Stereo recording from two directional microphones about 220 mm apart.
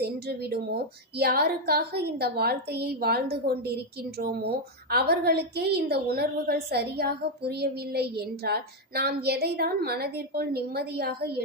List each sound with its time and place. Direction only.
0.0 s a woman's voice: 45° right (ahead or behind)